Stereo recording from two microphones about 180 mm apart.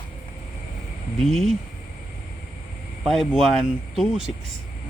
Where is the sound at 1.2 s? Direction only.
Centre (ahead or behind).